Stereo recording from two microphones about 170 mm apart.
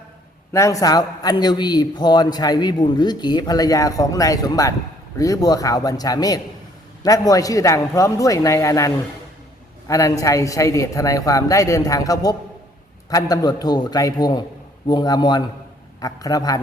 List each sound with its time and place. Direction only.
0.5 s a man's voice: 20° left (ahead or behind)